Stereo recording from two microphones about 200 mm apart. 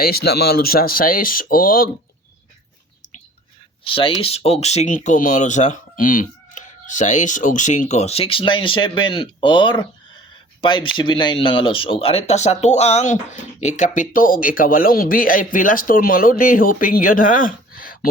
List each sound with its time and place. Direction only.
0.0 s speech: 50° left (ahead or behind)
3.8 s speech: 25° left (ahead or behind); by 18.1 s 45° left (ahead or behind)